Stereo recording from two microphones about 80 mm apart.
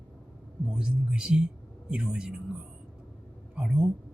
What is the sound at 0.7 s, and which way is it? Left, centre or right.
Speech, centre.